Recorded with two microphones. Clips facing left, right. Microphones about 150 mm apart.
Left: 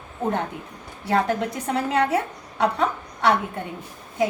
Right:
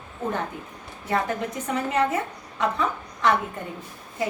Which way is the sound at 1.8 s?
85° left.